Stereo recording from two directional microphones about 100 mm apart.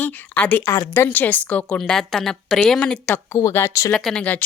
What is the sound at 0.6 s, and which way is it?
Speech, 35° left (ahead or behind).